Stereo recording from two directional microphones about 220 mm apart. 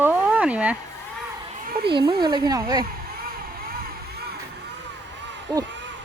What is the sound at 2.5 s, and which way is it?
Speech, 15° right (ahead or behind).